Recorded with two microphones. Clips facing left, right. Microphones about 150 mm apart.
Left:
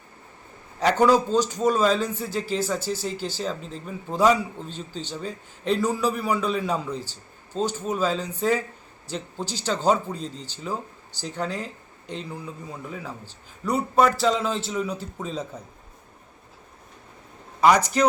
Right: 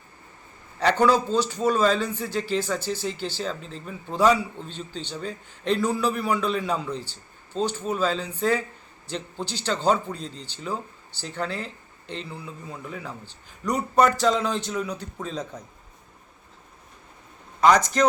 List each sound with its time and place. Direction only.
0.8 s a man's voice: 10° left (ahead or behind)
2.8 s speech: 40° left (ahead or behind)
3.2 s a man's voice: 5° left (ahead or behind)
4.7 s speech: 40° left (ahead or behind)
5.1 s a man's voice: 5° left (ahead or behind)
17.6 s a man's voice: 10° left (ahead or behind)